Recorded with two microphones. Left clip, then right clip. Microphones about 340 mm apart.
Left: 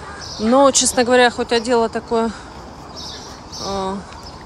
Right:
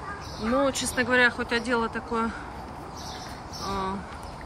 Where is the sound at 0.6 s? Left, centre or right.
Centre.